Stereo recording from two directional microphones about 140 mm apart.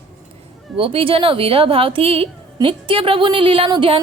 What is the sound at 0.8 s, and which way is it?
A woman's voice, 40° right (ahead or behind).